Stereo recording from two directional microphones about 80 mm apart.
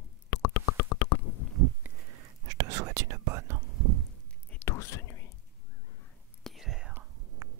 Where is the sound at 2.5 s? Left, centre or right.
Right.